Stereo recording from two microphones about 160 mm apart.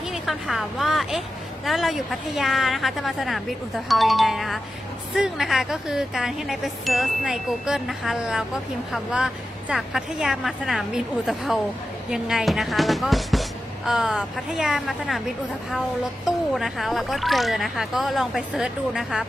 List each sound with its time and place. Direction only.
0.0 s speech: centre (ahead or behind)